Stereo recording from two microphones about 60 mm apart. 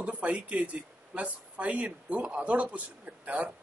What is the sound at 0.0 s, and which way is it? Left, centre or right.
Speech, right.